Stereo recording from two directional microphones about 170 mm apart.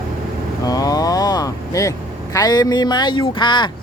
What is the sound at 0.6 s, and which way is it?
Speech, 20° left (ahead or behind).